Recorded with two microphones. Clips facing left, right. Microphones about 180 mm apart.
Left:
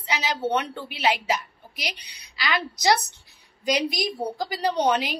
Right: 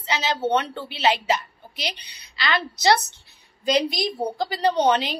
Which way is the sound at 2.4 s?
10° left (ahead or behind).